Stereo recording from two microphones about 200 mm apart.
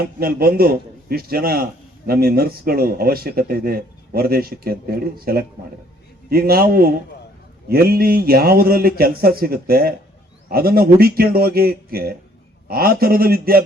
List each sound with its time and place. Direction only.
0.0 s speech: 50° right (ahead or behind)